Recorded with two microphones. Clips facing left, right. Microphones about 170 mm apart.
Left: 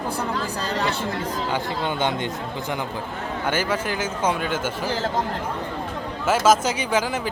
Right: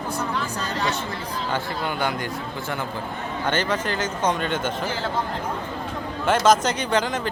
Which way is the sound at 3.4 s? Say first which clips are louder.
Even; 10° left (ahead or behind).